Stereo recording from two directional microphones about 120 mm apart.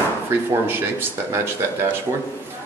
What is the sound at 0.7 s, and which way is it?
Speech, 20° right (ahead or behind).